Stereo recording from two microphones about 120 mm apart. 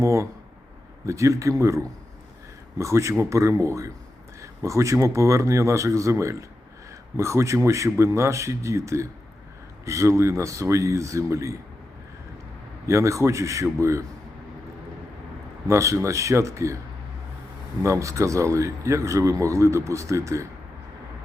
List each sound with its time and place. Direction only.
0.0 s speech: 25° right (ahead or behind)
12.9 s speech: 25° right (ahead or behind)
15.6 s speech: 25° right (ahead or behind)
17.8 s speech: 25° right (ahead or behind)